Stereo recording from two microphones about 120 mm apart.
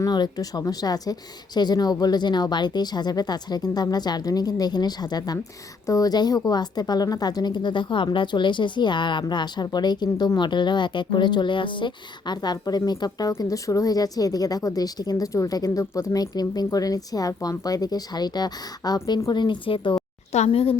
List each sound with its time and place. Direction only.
0.0 s a woman's voice: 35° left (ahead or behind)
20.3 s a woman's voice: 60° left (ahead or behind)